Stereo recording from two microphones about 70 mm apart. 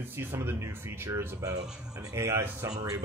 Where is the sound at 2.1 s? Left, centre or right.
Right.